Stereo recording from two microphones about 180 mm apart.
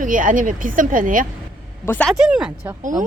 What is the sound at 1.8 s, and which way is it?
Speech, 10° left (ahead or behind).